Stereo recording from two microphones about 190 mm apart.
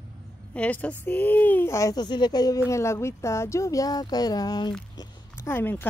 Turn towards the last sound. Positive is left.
turn(degrees=10)  # may be behind; listen again after turning